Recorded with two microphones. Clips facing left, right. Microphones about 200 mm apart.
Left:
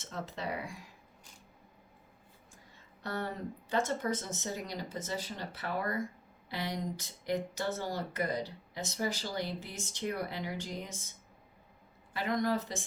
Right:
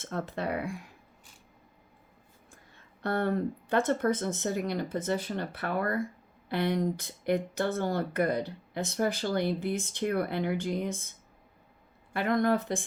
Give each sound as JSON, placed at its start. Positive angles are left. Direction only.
{"t": 0.0, "sound": "speech", "side_deg": -55}
{"t": 2.7, "sound": "speech", "side_deg": -60}
{"t": 12.1, "sound": "speech", "side_deg": -55}